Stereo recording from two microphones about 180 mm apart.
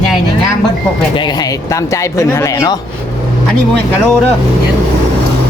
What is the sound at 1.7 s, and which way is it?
Speech, 15° left (ahead or behind).